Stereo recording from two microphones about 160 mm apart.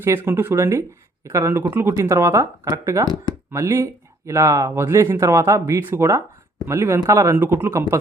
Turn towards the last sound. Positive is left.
turn(degrees=-15)  # may be behind; listen again after turning